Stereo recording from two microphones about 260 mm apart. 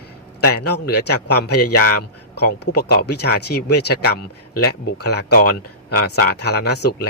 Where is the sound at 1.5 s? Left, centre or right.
Left.